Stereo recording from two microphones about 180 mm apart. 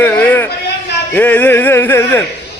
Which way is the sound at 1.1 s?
10° left (ahead or behind).